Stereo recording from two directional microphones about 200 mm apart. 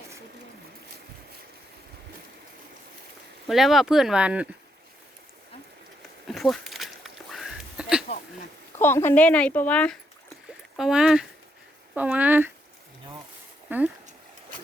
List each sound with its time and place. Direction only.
3.4 s speech: centre (ahead or behind)
6.2 s a sound: centre (ahead or behind)
8.8 s speech: 10° left (ahead or behind); by 12.5 s 10° right (ahead or behind)
13.7 s speech: 10° right (ahead or behind)